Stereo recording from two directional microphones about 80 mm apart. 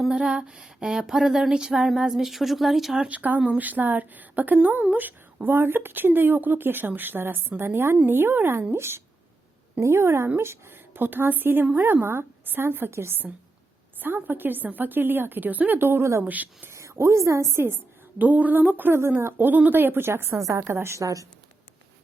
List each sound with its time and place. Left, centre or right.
0.0 s a sound: centre
3.0 s a woman's voice: centre
16.2 s speech: right
16.6 s a woman's voice: right
18.2 s a woman's voice: right